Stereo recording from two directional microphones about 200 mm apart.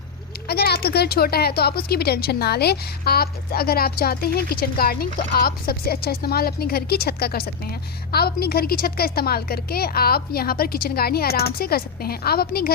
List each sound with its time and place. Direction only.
0.4 s speech: 50° left (ahead or behind)